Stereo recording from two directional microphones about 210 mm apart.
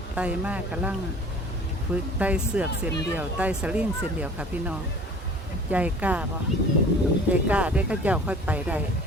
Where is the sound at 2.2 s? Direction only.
5° right (ahead or behind).